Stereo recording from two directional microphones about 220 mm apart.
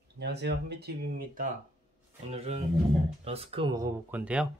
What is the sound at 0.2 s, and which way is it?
Speech, 50° right (ahead or behind).